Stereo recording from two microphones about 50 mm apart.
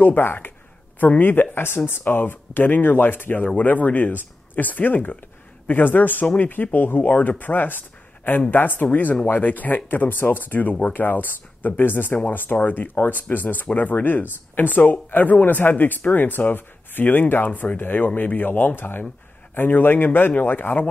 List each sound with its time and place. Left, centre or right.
0.0 s speech: left